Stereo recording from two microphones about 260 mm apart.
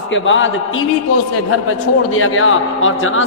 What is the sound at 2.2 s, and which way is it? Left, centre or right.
Speech, left.